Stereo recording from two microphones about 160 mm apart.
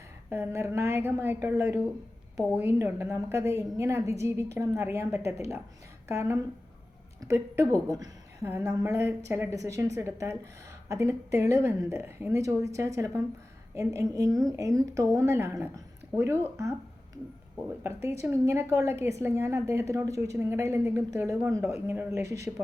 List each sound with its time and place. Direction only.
0.3 s a woman's voice: 15° right (ahead or behind)
17.8 s a woman's voice: 20° right (ahead or behind)